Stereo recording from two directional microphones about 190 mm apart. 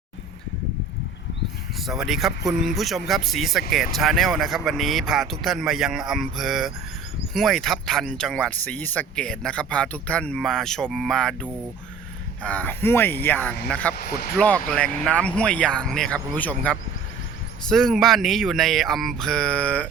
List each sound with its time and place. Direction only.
1.9 s speech: centre (ahead or behind)
13.9 s speech: 55° left (ahead or behind)
14.3 s speech: 5° left (ahead or behind)